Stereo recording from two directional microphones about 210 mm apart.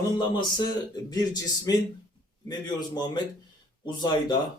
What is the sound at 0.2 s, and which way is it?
A man's voice, 20° left (ahead or behind).